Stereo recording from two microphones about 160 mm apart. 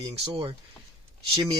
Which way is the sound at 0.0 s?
30° right (ahead or behind).